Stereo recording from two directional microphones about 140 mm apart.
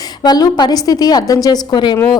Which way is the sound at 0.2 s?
30° left (ahead or behind).